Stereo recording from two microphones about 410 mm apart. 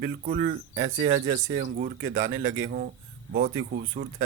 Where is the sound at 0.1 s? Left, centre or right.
Centre.